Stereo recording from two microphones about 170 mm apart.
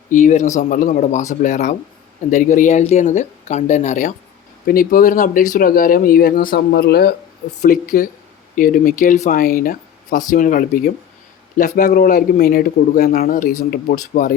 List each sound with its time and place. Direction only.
0.1 s speech: 45° left (ahead or behind)
4.6 s speech: 60° left (ahead or behind)
7.6 s speech: 55° left (ahead or behind)